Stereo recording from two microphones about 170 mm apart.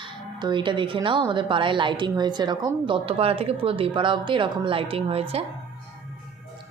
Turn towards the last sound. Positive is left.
turn(degrees=-35)  # may be behind; listen again after turning